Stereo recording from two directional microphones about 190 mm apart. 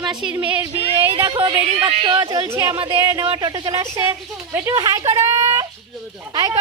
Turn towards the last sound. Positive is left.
turn(degrees=-20)  # may be behind; listen again after turning